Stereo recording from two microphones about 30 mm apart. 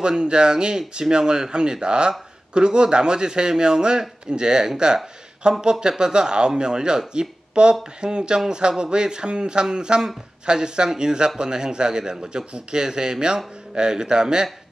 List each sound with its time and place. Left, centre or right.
0.2 s speech: right